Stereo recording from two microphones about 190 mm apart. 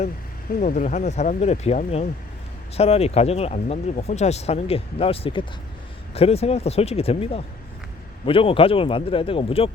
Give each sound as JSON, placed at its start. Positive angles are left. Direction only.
{"t": 0.6, "sound": "a man's voice", "side_deg": 40}